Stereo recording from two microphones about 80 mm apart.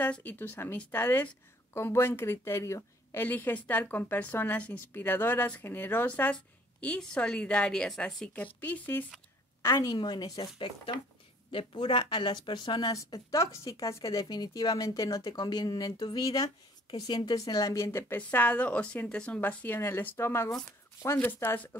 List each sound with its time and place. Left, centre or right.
0.0 s speech: left
3.2 s speech: left
9.7 s speech: left
9.9 s speech: left
11.5 s speech: left
12.9 s speech: left
17.4 s speech: left
18.1 s a woman's voice: left
19.4 s speech: left